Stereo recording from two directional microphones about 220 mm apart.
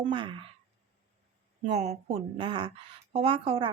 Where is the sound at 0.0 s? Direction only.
20° right (ahead or behind).